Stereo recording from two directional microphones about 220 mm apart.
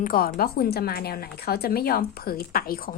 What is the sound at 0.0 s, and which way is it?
Speech, 40° left (ahead or behind).